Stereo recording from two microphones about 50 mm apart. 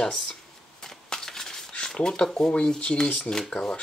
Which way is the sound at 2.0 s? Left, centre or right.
Left.